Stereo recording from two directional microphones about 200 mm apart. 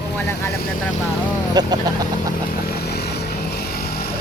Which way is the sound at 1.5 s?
20° right (ahead or behind).